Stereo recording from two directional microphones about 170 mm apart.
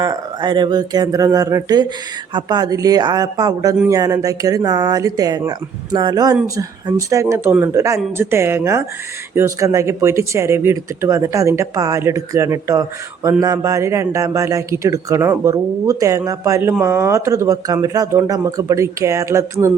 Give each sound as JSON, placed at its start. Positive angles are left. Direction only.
{"t": 0.0, "sound": "speech", "side_deg": -25}